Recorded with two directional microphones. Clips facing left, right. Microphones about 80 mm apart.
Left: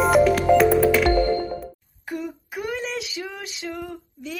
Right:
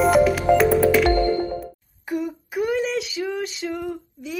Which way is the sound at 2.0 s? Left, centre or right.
Centre.